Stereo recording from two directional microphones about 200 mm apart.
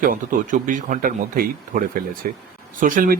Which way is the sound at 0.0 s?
45° right (ahead or behind).